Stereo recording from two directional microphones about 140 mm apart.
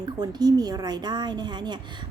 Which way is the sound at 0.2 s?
30° right (ahead or behind).